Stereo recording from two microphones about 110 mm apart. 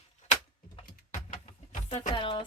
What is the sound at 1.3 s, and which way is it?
Music, 75° left (ahead or behind).